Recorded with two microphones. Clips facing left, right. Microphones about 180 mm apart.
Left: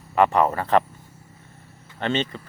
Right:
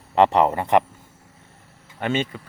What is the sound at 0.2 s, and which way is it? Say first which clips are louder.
Speech: right 2 dB; 20° right (ahead or behind).